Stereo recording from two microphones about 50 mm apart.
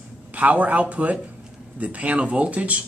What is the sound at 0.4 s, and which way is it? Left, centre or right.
Speech, right.